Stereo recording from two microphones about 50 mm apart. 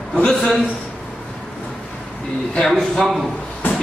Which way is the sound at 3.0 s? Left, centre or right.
Centre.